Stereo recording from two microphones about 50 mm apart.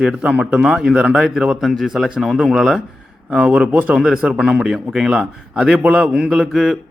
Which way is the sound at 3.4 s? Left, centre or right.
Right.